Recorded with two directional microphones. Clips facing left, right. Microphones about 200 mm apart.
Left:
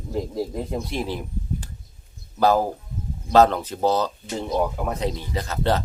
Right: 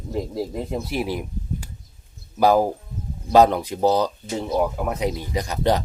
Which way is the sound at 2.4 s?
10° right (ahead or behind).